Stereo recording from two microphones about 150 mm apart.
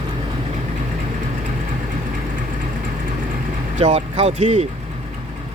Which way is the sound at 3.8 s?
45° right (ahead or behind).